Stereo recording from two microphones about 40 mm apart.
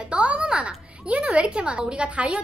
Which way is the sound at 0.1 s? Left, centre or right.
Right.